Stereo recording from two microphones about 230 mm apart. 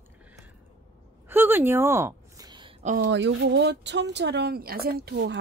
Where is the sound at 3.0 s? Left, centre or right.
Right.